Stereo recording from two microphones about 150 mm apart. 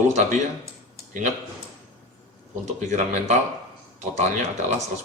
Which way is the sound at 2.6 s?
50° right (ahead or behind).